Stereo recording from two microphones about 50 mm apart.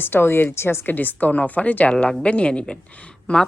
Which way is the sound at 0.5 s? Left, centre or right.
Left.